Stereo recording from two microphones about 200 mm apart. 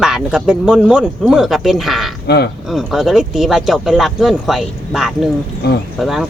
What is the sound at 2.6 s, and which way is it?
Speech, centre (ahead or behind).